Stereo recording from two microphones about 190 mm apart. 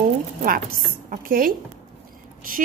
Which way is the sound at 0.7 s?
50° right (ahead or behind).